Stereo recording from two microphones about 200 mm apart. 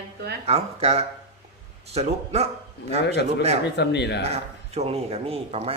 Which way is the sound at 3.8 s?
55° left (ahead or behind).